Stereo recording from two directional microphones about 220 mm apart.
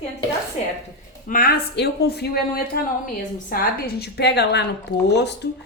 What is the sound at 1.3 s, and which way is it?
Speech, 40° left (ahead or behind).